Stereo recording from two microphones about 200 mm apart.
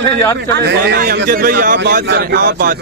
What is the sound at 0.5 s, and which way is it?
A man's voice, 55° right (ahead or behind).